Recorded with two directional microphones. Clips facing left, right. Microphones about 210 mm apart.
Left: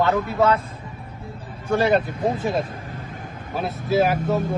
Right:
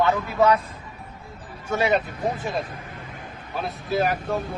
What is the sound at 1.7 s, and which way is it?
Speech, centre (ahead or behind).